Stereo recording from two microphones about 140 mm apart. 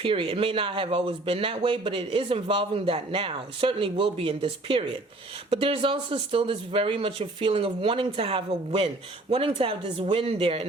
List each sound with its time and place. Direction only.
0.0 s speech: 40° right (ahead or behind)